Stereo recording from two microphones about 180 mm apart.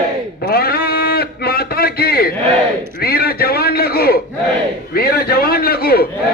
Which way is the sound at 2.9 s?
55° left (ahead or behind).